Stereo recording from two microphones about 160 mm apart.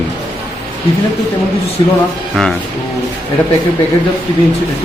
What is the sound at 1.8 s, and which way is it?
Speech, 25° left (ahead or behind).